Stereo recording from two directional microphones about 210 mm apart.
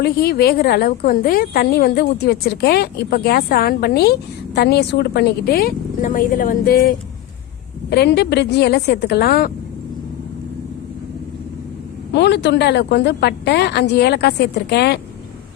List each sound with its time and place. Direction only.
0.0 s a woman's voice: 45° left (ahead or behind)
12.1 s a woman's voice: 55° left (ahead or behind)